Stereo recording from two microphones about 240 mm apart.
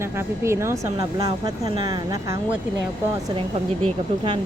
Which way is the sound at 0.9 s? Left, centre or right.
Right.